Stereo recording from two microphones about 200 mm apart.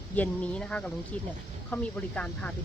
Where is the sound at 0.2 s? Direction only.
5° left (ahead or behind).